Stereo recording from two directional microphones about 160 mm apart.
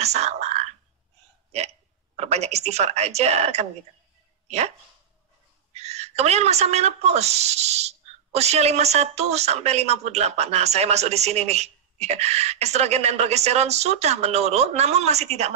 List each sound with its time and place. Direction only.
0.0 s whispering: 45° right (ahead or behind)
2.1 s a woman's voice: 45° right (ahead or behind)
5.7 s a woman's voice: 40° right (ahead or behind)